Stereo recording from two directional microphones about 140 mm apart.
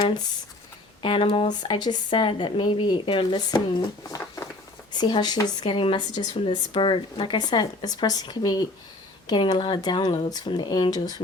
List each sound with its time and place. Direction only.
1.0 s speech: 40° left (ahead or behind)
6.3 s speech: 45° left (ahead or behind); by 11.2 s 30° left (ahead or behind)